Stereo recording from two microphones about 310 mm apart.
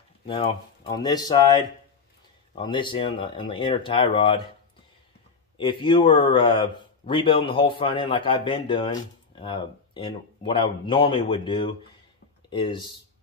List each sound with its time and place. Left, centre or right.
0.3 s speech: centre
5.6 s speech: centre